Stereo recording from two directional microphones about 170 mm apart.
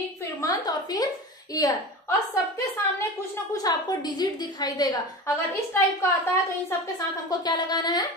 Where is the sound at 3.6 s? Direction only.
25° left (ahead or behind).